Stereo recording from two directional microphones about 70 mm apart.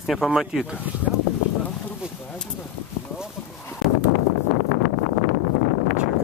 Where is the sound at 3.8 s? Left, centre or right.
Centre.